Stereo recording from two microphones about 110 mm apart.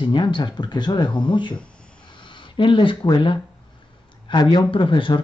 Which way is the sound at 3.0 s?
45° left (ahead or behind).